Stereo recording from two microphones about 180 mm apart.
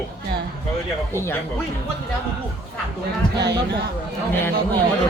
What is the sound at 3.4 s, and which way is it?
Speech, 65° right (ahead or behind).